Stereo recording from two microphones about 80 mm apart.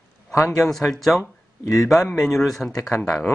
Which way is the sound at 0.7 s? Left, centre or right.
Centre.